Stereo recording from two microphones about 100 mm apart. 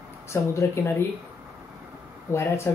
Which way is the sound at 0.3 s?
25° left (ahead or behind).